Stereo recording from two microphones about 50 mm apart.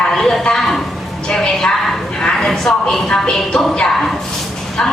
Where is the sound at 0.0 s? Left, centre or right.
Centre.